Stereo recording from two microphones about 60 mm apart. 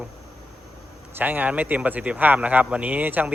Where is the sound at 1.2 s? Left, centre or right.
Right.